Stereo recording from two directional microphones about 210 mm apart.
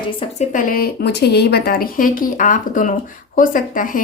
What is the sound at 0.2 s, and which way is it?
Speech, 35° left (ahead or behind).